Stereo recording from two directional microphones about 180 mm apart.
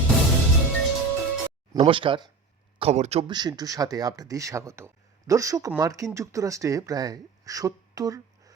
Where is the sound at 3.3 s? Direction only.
25° right (ahead or behind).